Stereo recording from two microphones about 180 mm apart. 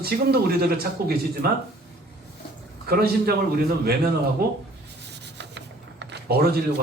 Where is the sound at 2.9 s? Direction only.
60° right (ahead or behind).